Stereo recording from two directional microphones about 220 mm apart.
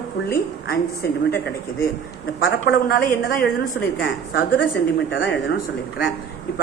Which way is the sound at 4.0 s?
55° left (ahead or behind).